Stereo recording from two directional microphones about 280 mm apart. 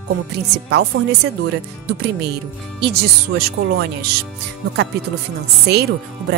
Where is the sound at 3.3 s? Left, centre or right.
Right.